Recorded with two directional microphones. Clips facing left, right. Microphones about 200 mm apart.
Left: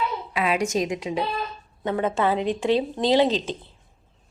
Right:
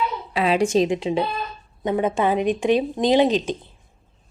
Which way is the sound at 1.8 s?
15° right (ahead or behind).